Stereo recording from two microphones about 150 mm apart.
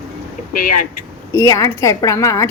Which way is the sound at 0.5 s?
65° left (ahead or behind).